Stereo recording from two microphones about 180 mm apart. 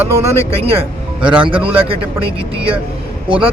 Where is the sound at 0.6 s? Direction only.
35° right (ahead or behind).